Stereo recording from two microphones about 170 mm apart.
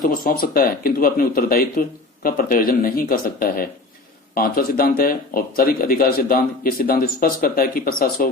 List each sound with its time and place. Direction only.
0.0 s speech: 55° left (ahead or behind)